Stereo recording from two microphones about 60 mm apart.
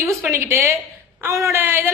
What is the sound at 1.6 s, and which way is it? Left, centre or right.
Speech, right.